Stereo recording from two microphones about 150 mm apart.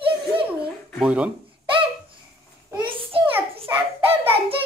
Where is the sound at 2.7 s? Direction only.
30° right (ahead or behind).